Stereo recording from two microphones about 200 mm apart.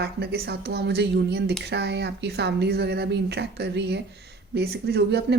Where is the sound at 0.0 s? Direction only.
55° right (ahead or behind).